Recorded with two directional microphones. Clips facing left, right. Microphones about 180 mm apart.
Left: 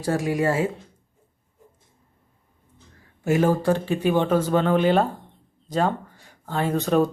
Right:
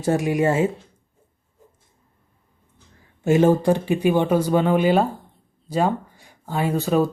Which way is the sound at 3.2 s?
25° right (ahead or behind).